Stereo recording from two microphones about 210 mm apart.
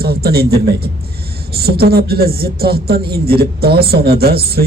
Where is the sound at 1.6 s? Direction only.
50° right (ahead or behind).